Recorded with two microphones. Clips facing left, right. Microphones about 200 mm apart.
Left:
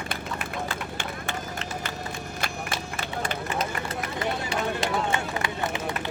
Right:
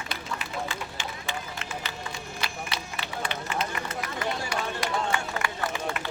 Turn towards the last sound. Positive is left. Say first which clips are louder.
# left 2 dB
turn(degrees=20)  # may be behind; listen again after turning